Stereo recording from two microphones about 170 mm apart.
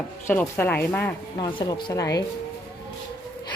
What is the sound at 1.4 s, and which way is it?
Speech, 25° left (ahead or behind).